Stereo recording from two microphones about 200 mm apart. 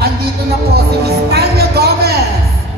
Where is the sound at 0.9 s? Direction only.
50° right (ahead or behind).